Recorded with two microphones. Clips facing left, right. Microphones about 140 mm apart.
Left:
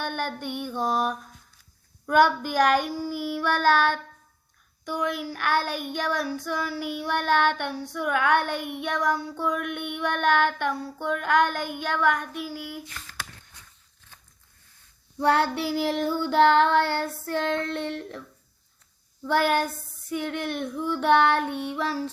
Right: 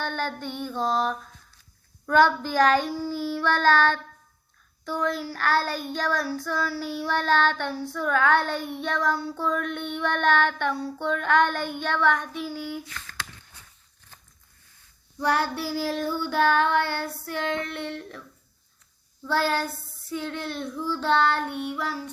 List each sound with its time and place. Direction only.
0.0 s child singing: 15° left (ahead or behind)
15.2 s child singing: 25° left (ahead or behind)
15.5 s child singing: 60° left (ahead or behind)
15.8 s child singing: 20° left (ahead or behind)
19.2 s child singing: 15° left (ahead or behind)